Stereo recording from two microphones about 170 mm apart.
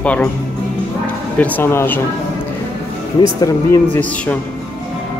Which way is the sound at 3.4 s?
15° left (ahead or behind).